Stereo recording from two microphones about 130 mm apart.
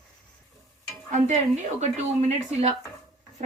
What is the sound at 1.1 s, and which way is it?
Speech, 65° right (ahead or behind).